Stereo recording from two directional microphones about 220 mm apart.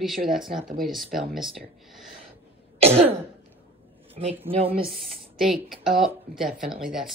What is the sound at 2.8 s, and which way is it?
Throat clearing, 30° right (ahead or behind).